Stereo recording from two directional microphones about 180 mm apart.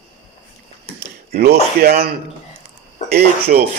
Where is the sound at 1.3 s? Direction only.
65° right (ahead or behind).